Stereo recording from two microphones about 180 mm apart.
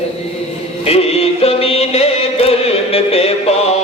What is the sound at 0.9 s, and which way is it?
Music, 35° left (ahead or behind).